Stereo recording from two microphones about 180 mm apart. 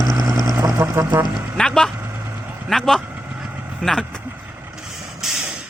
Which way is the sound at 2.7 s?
Centre (ahead or behind).